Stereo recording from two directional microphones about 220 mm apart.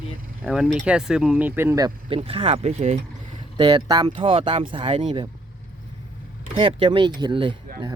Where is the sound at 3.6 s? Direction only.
15° right (ahead or behind).